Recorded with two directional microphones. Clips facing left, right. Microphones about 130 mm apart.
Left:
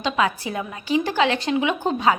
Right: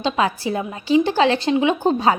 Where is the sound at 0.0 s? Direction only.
30° right (ahead or behind).